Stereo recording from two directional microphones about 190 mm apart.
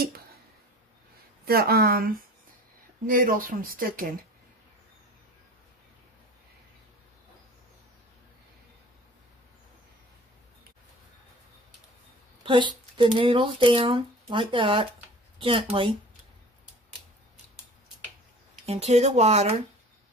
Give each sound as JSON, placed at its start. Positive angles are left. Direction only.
{"t": 0.0, "sound": "a sound", "side_deg": -55}
{"t": 1.4, "sound": "speech", "side_deg": -55}
{"t": 12.4, "sound": "speech", "side_deg": -25}
{"t": 15.3, "sound": "a sound", "side_deg": -30}
{"t": 15.7, "sound": "speech", "side_deg": -30}
{"t": 18.7, "sound": "speech", "side_deg": -35}